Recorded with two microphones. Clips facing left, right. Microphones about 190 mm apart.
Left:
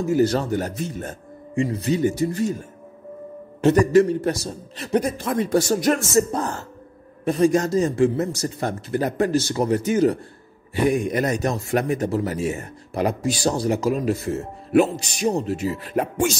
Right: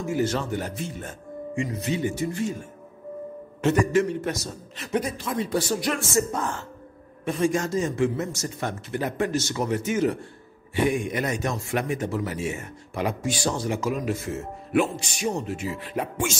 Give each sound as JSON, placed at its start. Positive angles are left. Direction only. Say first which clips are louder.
{"t": 0.0, "sound": "speech", "louder": "left 6 dB", "side_deg": 35}
{"t": 3.6, "sound": "speech", "louder": "left 6 dB", "side_deg": 35}